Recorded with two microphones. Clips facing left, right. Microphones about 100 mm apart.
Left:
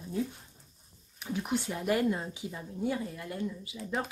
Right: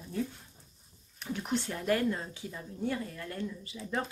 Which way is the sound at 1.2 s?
5° left (ahead or behind).